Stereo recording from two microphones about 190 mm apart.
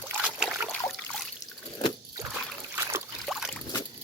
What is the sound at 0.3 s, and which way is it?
Trickle, 5° right (ahead or behind).